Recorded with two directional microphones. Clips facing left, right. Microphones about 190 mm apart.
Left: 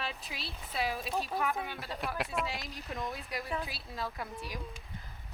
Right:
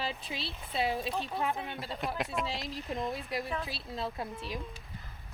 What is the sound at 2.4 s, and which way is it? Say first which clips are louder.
A woman's voice: right 3 dB; 30° right (ahead or behind).